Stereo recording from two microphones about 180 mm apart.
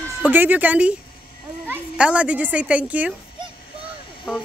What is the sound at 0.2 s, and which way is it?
Speech, 10° right (ahead or behind).